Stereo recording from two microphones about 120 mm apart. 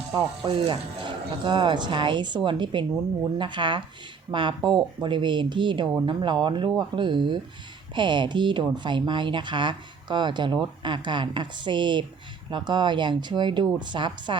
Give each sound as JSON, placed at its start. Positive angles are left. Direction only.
{"t": 0.1, "sound": "speech", "side_deg": -35}
{"t": 0.5, "sound": "speech", "side_deg": -45}